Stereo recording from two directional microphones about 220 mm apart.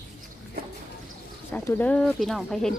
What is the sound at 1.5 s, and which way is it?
Speech, 5° left (ahead or behind).